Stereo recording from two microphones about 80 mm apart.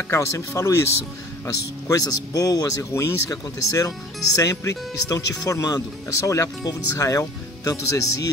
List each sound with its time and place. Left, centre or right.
0.1 s speech: left
1.9 s speech: left
2.8 s speech: left
6.2 s speech: left